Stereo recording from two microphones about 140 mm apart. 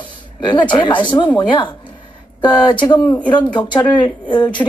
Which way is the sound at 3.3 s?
35° left (ahead or behind).